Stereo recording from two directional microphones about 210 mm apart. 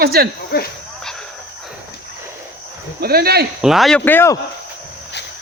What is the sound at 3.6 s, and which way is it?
Speech, centre (ahead or behind).